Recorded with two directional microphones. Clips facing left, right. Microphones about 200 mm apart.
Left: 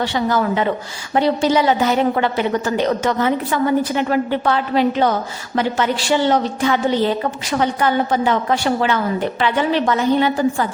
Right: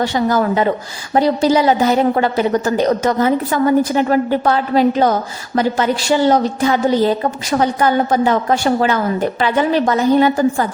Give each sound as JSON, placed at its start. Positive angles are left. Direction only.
{"t": 0.0, "sound": "a woman's voice", "side_deg": -40}